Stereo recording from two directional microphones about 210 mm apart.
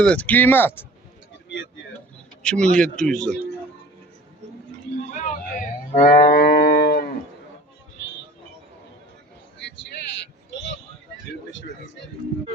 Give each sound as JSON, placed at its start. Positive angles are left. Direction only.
{"t": 0.0, "sound": "speech", "side_deg": 5}
{"t": 2.4, "sound": "a man's voice", "side_deg": 5}
{"t": 4.9, "sound": "livestock", "side_deg": 35}